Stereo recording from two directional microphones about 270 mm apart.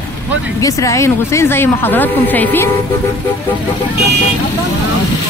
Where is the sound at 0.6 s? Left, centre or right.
Centre.